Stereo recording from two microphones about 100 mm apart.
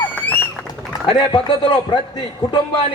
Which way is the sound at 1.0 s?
60° left (ahead or behind).